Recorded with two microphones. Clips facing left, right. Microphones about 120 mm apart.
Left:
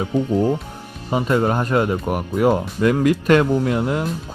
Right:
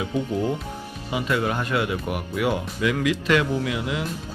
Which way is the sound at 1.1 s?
40° left (ahead or behind).